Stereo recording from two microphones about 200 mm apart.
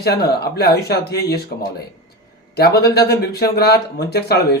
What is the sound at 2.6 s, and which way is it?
Speech, 55° left (ahead or behind).